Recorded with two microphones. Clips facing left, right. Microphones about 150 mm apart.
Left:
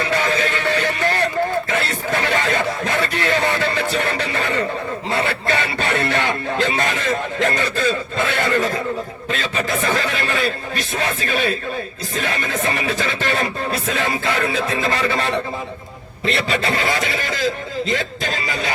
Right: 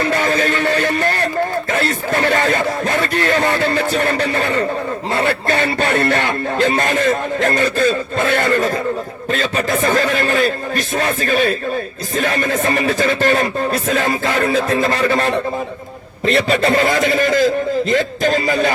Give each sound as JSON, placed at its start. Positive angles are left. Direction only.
{"t": 0.0, "sound": "music", "side_deg": -45}
{"t": 1.7, "sound": "speech", "side_deg": -45}